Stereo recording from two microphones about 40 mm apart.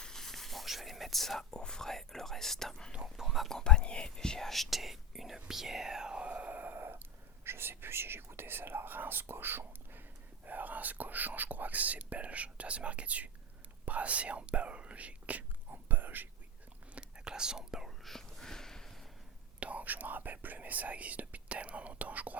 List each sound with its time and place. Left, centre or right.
0.0 s whispering: centre
1.5 s speech: left
3.2 s speech: centre
3.5 s speech: centre
4.4 s speech: centre; by 6.5 s right
6.5 s gasp: right
7.4 s speech: right
10.4 s speech: right
15.7 s whispering: right
16.9 s whispering: right
18.0 s a sound: centre
19.5 s speech: right